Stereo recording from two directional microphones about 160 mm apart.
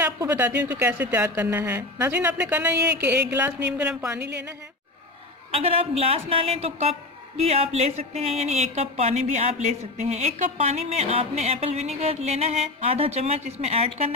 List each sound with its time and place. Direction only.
0.3 s a woman's voice: 10° right (ahead or behind)
4.2 s a woman's voice: 90° right
5.5 s speech: 40° right (ahead or behind)